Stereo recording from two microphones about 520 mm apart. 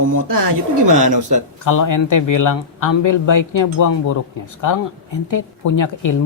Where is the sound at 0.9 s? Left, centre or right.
Right.